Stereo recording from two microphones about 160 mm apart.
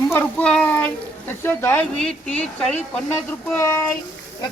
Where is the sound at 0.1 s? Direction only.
10° left (ahead or behind).